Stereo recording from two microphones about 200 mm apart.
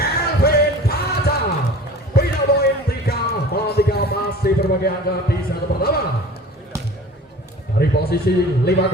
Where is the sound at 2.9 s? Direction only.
50° left (ahead or behind).